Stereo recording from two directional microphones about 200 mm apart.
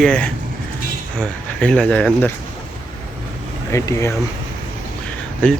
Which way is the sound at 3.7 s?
15° left (ahead or behind).